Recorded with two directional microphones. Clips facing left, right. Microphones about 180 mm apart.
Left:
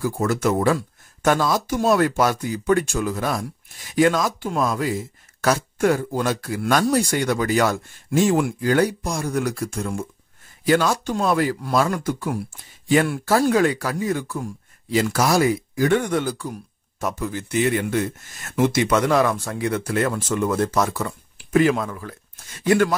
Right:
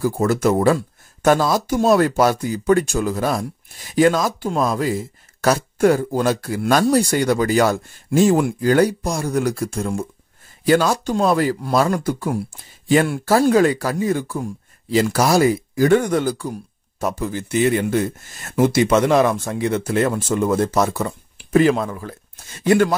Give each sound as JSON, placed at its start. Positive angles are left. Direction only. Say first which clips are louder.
{"t": 0.0, "sound": "speech", "louder": "right 4 dB", "side_deg": -35}